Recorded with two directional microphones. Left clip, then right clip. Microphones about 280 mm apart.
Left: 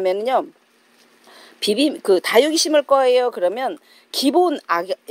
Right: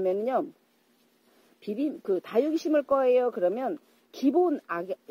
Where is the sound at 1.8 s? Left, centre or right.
Left.